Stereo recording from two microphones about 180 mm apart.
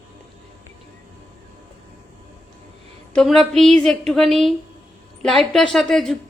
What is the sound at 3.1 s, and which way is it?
A woman's voice, centre (ahead or behind).